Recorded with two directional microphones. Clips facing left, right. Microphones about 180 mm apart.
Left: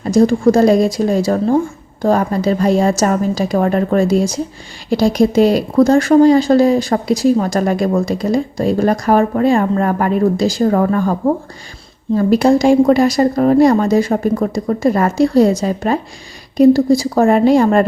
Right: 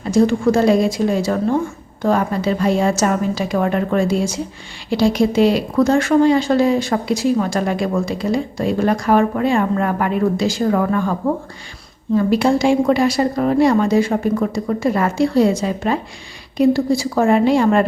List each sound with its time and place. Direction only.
0.0 s a woman's voice: 40° left (ahead or behind)